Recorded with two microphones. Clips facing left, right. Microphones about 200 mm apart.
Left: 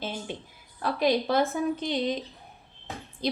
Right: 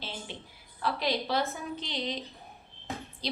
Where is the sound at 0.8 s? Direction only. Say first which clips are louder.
Left 6 dB; 45° left (ahead or behind).